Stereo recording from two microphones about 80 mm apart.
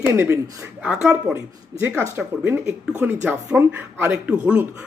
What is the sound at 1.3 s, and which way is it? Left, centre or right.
A man's voice, right.